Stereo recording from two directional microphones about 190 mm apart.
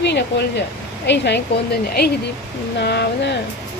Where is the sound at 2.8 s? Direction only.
60° left (ahead or behind).